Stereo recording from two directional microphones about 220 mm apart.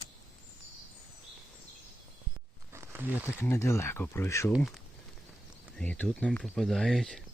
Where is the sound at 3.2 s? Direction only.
10° left (ahead or behind).